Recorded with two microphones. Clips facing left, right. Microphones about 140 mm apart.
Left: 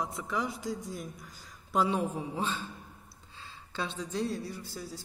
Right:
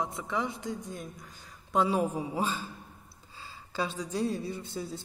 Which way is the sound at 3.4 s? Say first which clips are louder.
Right 4 dB; 10° right (ahead or behind).